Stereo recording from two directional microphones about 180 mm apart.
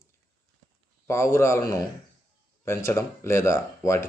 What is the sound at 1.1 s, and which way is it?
Speech, 15° left (ahead or behind).